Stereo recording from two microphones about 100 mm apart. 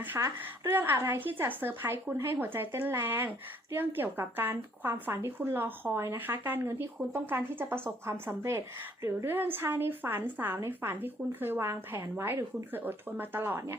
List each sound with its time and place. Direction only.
0.2 s speech: 35° right (ahead or behind)